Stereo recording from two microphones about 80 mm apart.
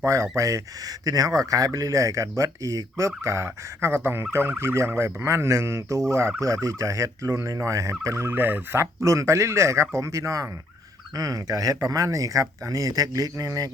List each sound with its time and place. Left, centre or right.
0.0 s speech: right
8.3 s speech: right